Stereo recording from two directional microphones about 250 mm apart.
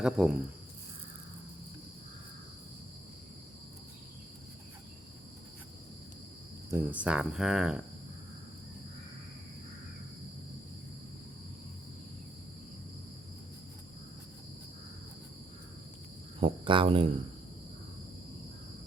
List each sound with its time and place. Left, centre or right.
0.0 s speech: centre
6.7 s speech: centre
16.4 s speech: right